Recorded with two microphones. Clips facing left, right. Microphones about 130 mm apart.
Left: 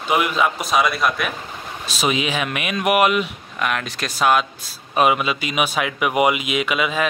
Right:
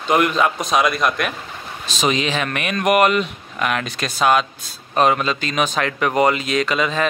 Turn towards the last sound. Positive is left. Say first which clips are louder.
# right 2 dB
turn(degrees=10)  # may be behind; listen again after turning